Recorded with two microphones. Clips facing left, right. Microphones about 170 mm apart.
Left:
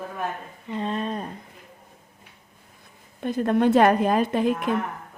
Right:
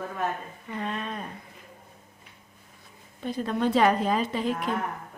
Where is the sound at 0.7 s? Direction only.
30° left (ahead or behind).